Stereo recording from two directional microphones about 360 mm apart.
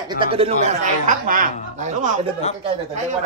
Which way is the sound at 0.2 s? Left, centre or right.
Centre.